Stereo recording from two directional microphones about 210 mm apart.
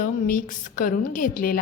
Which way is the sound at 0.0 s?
40° left (ahead or behind).